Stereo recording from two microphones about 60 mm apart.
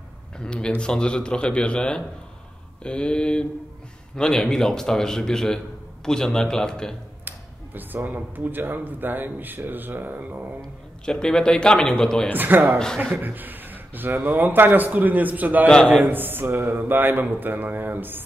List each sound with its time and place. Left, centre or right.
0.4 s a man's voice: centre
7.2 s speech: right
11.1 s a man's voice: centre
12.4 s speech: right
12.7 s a man's voice: centre
13.0 s speech: right